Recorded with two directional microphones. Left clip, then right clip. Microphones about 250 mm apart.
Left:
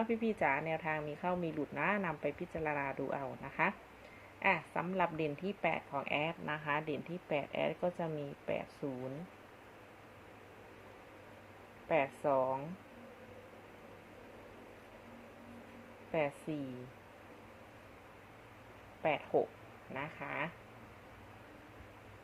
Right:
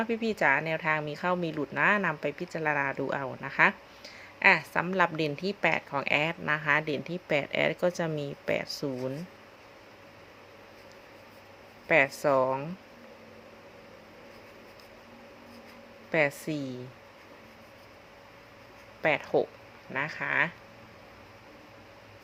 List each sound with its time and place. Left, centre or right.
0.0 s a woman's voice: right
11.9 s speech: right
16.1 s a woman's voice: right
19.0 s a woman's voice: right